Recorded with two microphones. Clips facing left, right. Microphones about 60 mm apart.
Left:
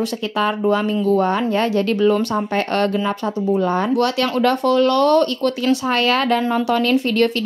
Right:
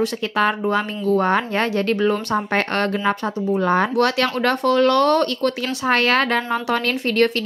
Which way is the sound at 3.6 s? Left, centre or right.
Right.